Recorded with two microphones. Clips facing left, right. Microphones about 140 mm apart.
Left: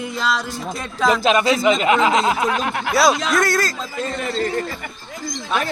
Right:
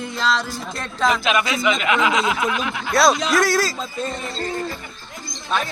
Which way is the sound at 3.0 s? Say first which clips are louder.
Even; centre (ahead or behind).